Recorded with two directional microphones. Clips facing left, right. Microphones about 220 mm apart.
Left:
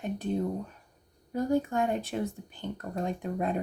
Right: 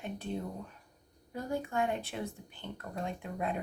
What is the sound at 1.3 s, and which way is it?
A woman's voice, 40° left (ahead or behind).